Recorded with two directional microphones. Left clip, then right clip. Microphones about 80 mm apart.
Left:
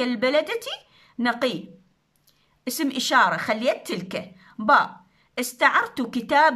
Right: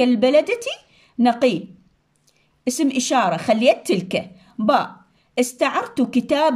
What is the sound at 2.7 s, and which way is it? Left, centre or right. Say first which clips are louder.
A woman's voice: right 4 dB; right.